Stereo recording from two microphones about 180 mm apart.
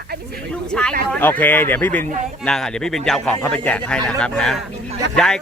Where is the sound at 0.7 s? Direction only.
5° left (ahead or behind).